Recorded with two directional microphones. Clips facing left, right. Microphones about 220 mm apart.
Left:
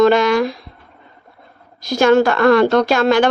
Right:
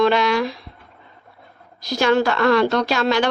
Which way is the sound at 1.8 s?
50° left (ahead or behind).